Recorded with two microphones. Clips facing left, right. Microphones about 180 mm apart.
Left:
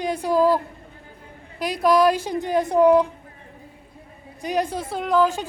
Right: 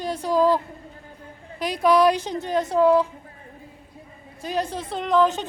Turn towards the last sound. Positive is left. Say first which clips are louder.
# even
turn(degrees=5)  # may be behind; listen again after turning